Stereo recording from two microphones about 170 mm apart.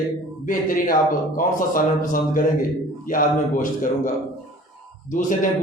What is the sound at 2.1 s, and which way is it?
A man's voice, 55° left (ahead or behind).